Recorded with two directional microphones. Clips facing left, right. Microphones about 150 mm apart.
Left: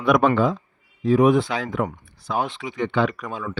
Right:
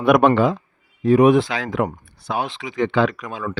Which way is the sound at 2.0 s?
70° right (ahead or behind).